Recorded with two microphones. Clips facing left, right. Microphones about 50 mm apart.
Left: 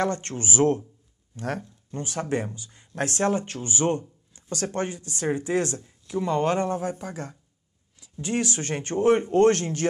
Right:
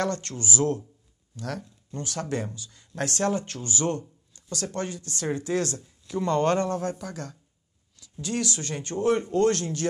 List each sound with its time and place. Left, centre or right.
0.0 s speech: left
5.8 s speech: left
6.2 s speech: centre; by 9.8 s left